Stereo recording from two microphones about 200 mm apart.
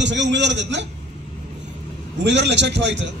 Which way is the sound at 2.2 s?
60° right (ahead or behind).